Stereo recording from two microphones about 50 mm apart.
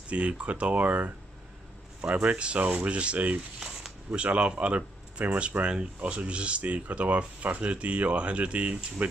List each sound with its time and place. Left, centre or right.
0.1 s speech: right